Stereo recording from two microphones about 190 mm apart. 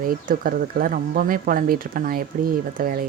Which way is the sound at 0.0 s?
50° right (ahead or behind).